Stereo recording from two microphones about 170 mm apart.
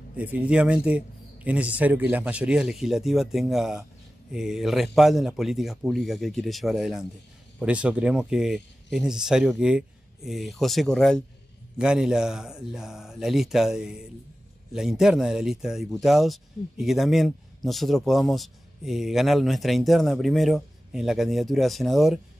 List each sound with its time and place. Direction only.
0.1 s speech: 10° right (ahead or behind)